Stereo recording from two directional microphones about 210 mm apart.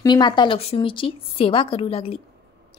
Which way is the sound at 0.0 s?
20° left (ahead or behind).